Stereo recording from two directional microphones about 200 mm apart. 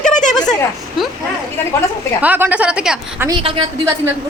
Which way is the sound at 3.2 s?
25° right (ahead or behind).